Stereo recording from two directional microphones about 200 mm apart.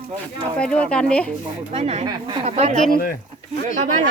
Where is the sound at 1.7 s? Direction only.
35° right (ahead or behind).